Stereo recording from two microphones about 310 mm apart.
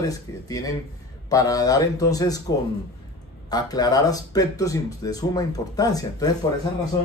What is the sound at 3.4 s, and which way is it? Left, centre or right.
Speech, centre.